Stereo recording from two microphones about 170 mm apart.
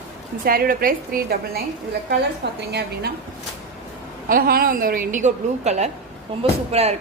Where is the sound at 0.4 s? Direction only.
60° right (ahead or behind).